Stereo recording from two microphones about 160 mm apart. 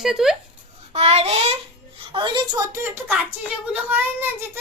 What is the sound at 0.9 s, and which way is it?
Child singing, 40° right (ahead or behind).